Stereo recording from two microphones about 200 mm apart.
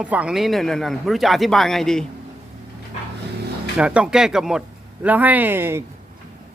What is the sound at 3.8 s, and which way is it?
Speech, 5° right (ahead or behind).